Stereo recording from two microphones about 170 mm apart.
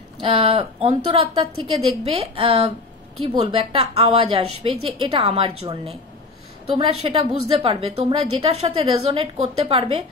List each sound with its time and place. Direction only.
0.2 s a woman's voice: 30° right (ahead or behind)
6.9 s a woman's voice: 35° right (ahead or behind)